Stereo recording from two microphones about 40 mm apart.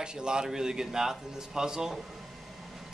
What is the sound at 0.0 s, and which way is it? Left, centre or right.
A man's voice, right.